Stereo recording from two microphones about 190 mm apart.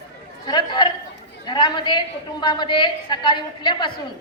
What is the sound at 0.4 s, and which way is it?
A woman's voice, 25° left (ahead or behind).